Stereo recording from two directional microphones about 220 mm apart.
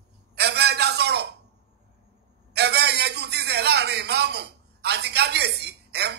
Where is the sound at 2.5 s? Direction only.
50° right (ahead or behind).